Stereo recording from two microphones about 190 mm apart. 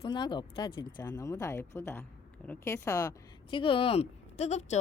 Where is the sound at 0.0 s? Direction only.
25° left (ahead or behind).